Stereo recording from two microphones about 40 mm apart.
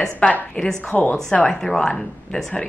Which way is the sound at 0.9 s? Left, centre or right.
Left.